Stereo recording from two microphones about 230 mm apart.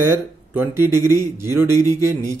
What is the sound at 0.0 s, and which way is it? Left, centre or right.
Speech, centre.